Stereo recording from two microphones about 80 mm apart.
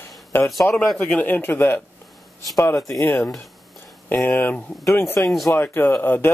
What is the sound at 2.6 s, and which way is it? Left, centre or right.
Speech, left.